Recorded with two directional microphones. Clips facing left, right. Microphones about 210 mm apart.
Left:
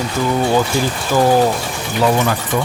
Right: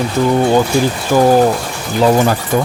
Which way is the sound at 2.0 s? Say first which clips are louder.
Right 4 dB; 30° right (ahead or behind).